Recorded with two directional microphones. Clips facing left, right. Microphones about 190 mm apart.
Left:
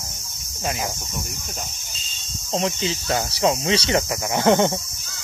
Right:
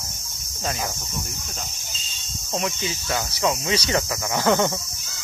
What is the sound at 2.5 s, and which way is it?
Speech, 30° left (ahead or behind).